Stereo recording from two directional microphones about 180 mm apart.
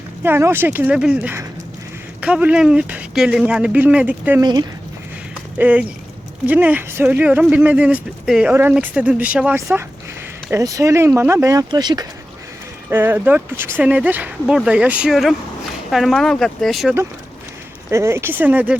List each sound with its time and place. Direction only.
0.2 s speech: 10° right (ahead or behind)
4.4 s speech: 20° right (ahead or behind)
5.5 s speech: 10° right (ahead or behind)
12.9 s speech: 10° right (ahead or behind)
17.9 s speech: 15° right (ahead or behind)